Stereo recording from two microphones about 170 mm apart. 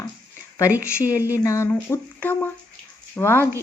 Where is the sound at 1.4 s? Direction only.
15° left (ahead or behind).